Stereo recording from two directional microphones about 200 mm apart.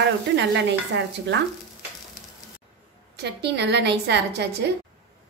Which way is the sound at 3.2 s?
55° right (ahead or behind).